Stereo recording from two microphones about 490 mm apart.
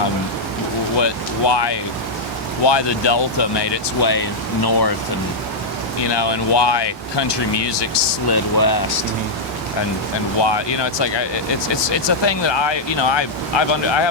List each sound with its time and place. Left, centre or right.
0.9 s speech: left
6.0 s speech: left
10.4 s speech: left